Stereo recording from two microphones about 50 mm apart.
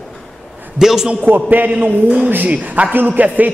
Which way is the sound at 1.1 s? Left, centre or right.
Right.